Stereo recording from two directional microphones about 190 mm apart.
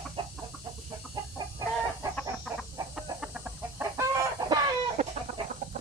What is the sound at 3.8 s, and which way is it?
Chicken, 15° right (ahead or behind).